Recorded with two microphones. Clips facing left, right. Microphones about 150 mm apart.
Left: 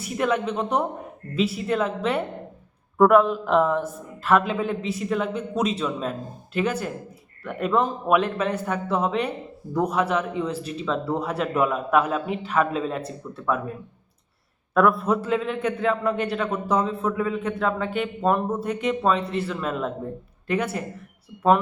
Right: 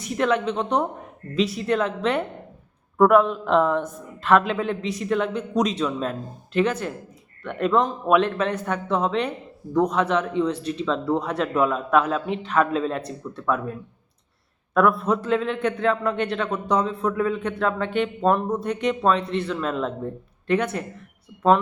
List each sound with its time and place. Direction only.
0.0 s a man's voice: 5° left (ahead or behind)
14.7 s a man's voice: centre (ahead or behind)